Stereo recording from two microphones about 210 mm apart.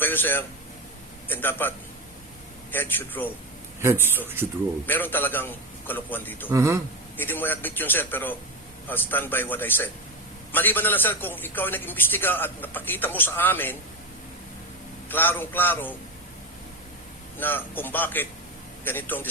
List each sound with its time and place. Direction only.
0.0 s a man's voice: 10° left (ahead or behind)
2.7 s a man's voice: 10° left (ahead or behind)
3.8 s a man's voice: 10° right (ahead or behind)
4.9 s a man's voice: 10° left (ahead or behind)
6.5 s a man's voice: 15° right (ahead or behind)
7.2 s a man's voice: 10° left (ahead or behind)
15.1 s a man's voice: 10° left (ahead or behind)
17.3 s a man's voice: 10° left (ahead or behind)